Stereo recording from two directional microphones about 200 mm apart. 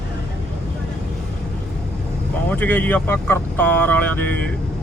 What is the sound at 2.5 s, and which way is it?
Speech, 10° left (ahead or behind).